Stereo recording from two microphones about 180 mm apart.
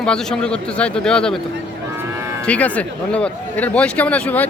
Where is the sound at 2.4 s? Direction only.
5° left (ahead or behind).